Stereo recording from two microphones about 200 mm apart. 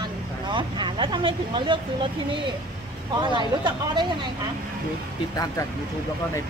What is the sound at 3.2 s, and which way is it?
Speech, 25° right (ahead or behind).